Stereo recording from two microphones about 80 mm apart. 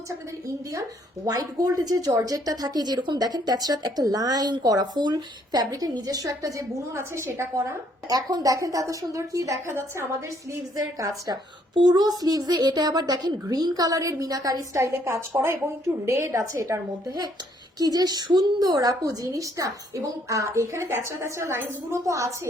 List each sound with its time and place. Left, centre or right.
0.7 s a woman's voice: right
8.1 s a woman's voice: right
11.3 s a child's voice: right
17.7 s a woman's voice: right